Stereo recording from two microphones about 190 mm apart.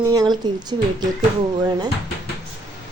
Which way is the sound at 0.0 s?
20° right (ahead or behind).